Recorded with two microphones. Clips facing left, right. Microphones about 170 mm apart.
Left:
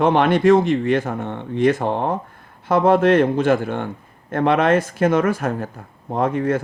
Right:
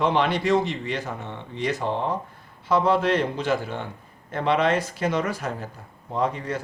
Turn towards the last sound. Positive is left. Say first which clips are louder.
# left 7 dB
turn(degrees=50)  # may be behind; listen again after turning